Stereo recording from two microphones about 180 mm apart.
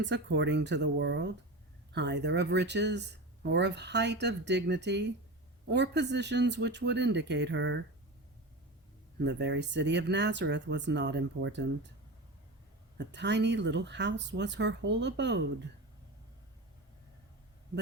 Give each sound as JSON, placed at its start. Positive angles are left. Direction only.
{"t": 0.0, "sound": "speech", "side_deg": -80}
{"t": 9.2, "sound": "speech", "side_deg": -75}
{"t": 13.0, "sound": "speech", "side_deg": -70}